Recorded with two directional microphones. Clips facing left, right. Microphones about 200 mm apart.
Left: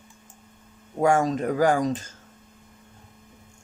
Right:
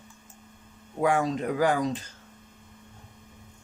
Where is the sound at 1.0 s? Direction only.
45° left (ahead or behind).